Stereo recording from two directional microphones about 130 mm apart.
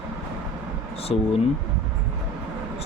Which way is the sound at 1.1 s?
50° left (ahead or behind).